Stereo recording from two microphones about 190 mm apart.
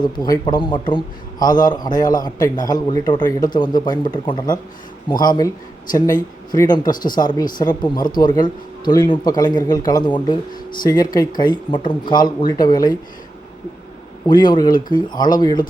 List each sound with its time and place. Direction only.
0.0 s a man's voice: 20° left (ahead or behind)
6.5 s a man's voice: 20° left (ahead or behind)
14.3 s a man's voice: 25° left (ahead or behind)